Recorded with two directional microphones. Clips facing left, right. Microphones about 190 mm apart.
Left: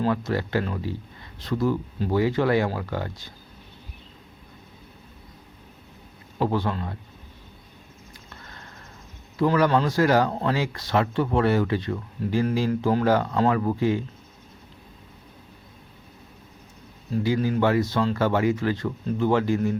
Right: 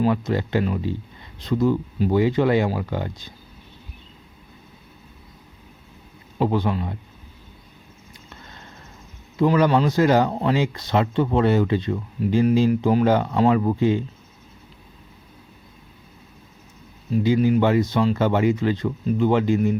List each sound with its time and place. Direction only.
0.3 s speech: 20° right (ahead or behind)
6.4 s speech: 15° right (ahead or behind)
9.4 s speech: 20° right (ahead or behind)
17.1 s speech: 20° right (ahead or behind)